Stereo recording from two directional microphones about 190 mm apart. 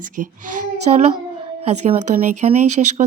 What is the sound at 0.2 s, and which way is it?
Child singing, 45° right (ahead or behind).